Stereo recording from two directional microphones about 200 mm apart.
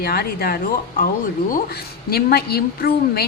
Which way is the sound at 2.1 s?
50° left (ahead or behind).